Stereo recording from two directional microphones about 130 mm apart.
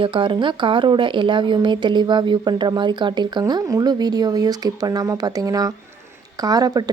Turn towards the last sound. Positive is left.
turn(degrees=-30)  # may be behind; listen again after turning